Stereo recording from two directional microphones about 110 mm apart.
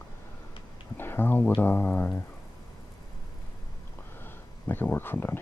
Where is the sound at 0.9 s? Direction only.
20° left (ahead or behind).